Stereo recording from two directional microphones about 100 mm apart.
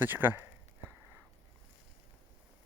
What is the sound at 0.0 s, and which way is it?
Speech, 20° right (ahead or behind).